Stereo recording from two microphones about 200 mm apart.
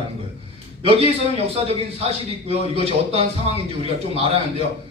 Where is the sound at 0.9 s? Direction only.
30° right (ahead or behind).